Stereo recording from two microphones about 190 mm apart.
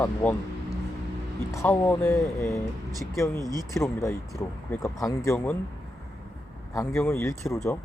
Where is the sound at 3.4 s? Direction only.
20° right (ahead or behind).